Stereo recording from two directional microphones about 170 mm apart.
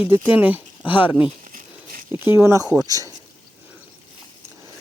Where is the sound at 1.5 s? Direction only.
55° right (ahead or behind).